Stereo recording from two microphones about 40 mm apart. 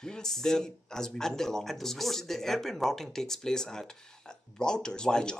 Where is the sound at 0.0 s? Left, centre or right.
Centre.